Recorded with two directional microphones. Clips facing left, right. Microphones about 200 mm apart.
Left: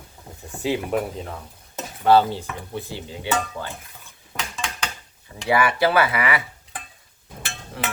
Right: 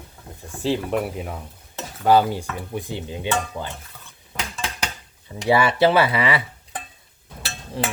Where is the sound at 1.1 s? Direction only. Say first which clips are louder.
Right 2 dB; 10° right (ahead or behind).